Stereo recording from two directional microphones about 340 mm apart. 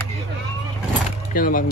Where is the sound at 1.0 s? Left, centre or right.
Left.